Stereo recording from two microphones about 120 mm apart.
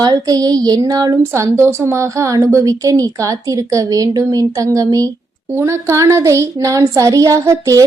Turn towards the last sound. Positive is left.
turn(degrees=-25)  # may be behind; listen again after turning